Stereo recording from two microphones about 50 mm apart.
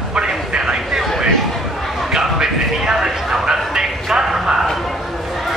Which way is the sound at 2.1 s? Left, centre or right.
Centre.